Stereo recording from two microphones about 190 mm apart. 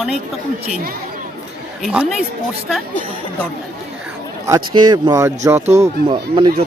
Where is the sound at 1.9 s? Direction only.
5° right (ahead or behind).